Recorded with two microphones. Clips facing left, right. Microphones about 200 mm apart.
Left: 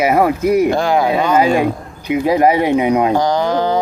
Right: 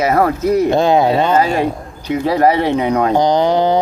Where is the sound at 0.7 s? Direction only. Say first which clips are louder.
Right 2 dB; 20° right (ahead or behind).